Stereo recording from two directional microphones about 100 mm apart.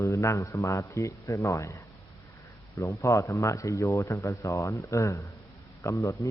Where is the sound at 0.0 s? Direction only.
30° left (ahead or behind).